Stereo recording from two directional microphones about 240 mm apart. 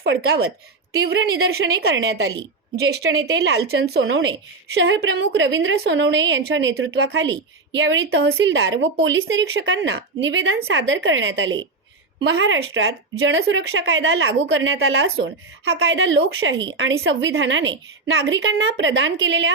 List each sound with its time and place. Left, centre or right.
0.0 s speech: right